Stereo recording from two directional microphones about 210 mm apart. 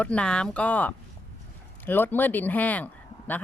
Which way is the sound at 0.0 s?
5° left (ahead or behind).